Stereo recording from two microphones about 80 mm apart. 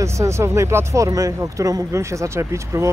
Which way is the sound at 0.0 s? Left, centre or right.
Right.